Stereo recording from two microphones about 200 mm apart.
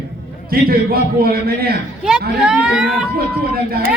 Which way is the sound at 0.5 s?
50° right (ahead or behind).